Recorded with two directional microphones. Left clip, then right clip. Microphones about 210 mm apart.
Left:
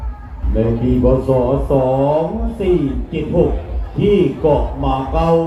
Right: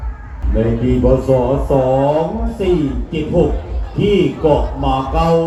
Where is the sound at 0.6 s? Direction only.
45° right (ahead or behind).